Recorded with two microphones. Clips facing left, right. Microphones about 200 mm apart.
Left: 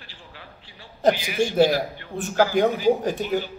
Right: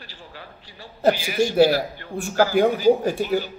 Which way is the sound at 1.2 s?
40° right (ahead or behind).